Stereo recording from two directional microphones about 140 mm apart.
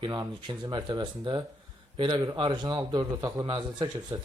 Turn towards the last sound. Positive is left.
turn(degrees=-30)  # may be behind; listen again after turning